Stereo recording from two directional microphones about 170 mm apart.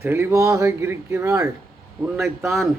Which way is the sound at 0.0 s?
15° right (ahead or behind).